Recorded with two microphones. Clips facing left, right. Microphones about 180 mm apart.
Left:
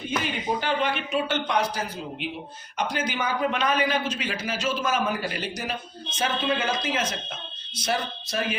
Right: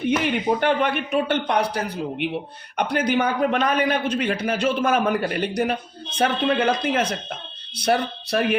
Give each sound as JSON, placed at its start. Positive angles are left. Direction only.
{"t": 0.2, "sound": "a man's voice", "side_deg": -60}